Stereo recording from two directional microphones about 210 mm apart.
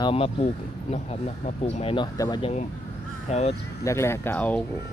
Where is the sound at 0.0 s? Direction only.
25° left (ahead or behind).